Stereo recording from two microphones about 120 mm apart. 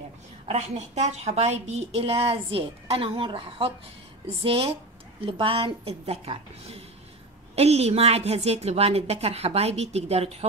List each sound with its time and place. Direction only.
0.5 s a woman's voice: 70° right (ahead or behind)